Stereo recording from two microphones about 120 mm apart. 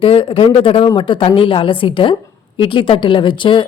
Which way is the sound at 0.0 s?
45° left (ahead or behind).